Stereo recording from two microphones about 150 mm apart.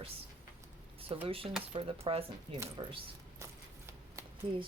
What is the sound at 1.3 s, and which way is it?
Speech, 40° right (ahead or behind).